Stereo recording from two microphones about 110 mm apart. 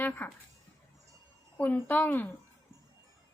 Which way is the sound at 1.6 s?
15° left (ahead or behind).